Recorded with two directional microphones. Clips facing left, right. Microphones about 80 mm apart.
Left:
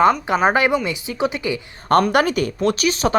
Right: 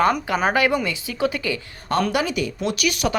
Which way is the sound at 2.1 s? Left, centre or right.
Left.